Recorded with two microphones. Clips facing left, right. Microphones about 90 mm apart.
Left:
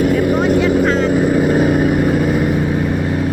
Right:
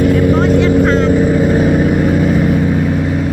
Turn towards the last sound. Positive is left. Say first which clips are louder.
# right 2 dB
turn(degrees=5)  # may be behind; listen again after turning